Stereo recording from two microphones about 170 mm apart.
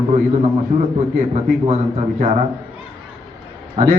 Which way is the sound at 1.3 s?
40° right (ahead or behind).